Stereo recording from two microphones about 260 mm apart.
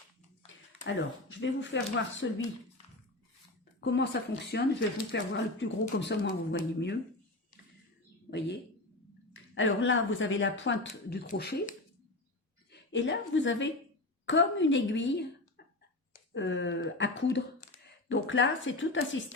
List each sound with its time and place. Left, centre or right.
0.4 s speech: left
3.8 s speech: left
8.3 s speech: left
12.7 s a woman's voice: left